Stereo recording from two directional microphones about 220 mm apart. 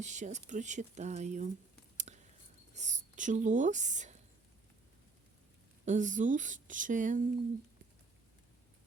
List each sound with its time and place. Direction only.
0.0 s speech: 35° right (ahead or behind)
2.0 s whispering: 30° right (ahead or behind)
2.7 s speech: 35° right (ahead or behind)
5.8 s speech: 35° right (ahead or behind)